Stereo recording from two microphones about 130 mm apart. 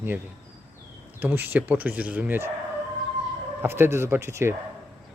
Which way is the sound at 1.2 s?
15° right (ahead or behind).